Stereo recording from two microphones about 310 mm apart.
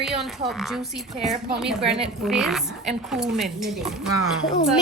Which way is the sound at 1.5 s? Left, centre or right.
Centre.